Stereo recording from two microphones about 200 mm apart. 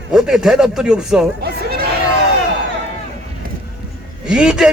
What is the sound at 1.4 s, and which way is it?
Speech, 50° right (ahead or behind).